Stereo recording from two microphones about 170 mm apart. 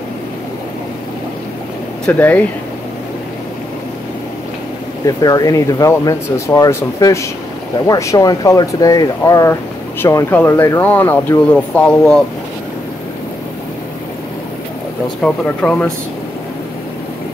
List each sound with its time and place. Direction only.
2.0 s speech: 10° left (ahead or behind)
5.0 s speech: 20° left (ahead or behind)
15.2 s speech: 5° left (ahead or behind)